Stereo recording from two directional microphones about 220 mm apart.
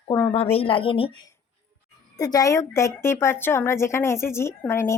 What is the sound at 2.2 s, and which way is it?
Speech, 15° left (ahead or behind).